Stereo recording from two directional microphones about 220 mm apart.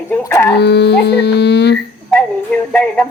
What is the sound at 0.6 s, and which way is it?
Speech, 50° left (ahead or behind).